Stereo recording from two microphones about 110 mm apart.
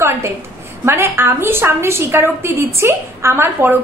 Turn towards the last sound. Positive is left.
turn(degrees=-20)  # may be behind; listen again after turning